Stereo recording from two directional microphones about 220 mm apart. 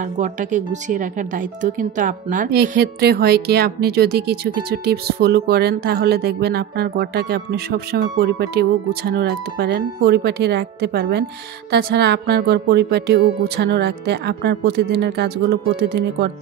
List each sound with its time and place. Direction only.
0.2 s speech: 35° right (ahead or behind)